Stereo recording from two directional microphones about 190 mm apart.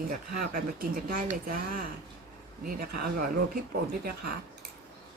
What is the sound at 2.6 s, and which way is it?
Speech, 45° right (ahead or behind).